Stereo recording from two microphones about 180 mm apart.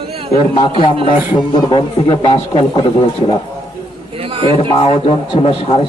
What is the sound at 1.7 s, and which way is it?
A man's voice, 25° left (ahead or behind).